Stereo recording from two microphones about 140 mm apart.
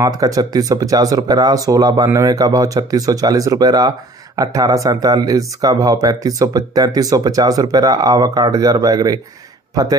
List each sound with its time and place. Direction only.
0.0 s speech: 25° right (ahead or behind)